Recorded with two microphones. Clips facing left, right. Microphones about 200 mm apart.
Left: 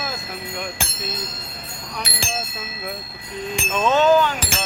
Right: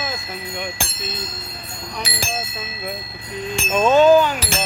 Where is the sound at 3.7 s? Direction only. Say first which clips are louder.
Right 4 dB; 15° right (ahead or behind).